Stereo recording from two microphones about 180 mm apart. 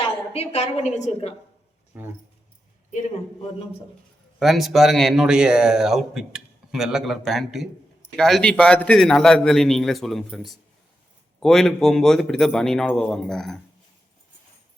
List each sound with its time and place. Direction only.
0.0 s a woman's voice: 35° left (ahead or behind)
1.9 s speech: 10° right (ahead or behind)
4.4 s speech: centre (ahead or behind)